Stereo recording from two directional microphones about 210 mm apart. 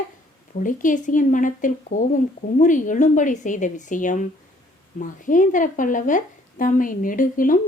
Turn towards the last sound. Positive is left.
turn(degrees=40)  # may be behind; listen again after turning